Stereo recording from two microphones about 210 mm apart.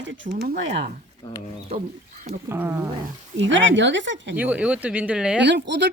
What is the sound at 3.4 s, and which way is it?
Speech, 65° right (ahead or behind).